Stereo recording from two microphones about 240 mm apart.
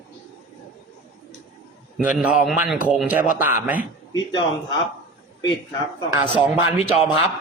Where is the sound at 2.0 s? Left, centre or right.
Centre.